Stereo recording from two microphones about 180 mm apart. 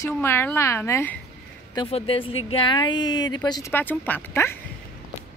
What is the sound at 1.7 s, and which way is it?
A woman's voice, 30° left (ahead or behind).